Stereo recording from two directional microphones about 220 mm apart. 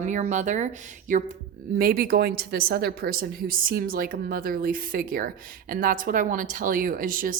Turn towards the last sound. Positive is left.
turn(degrees=-40)  # may be behind; listen again after turning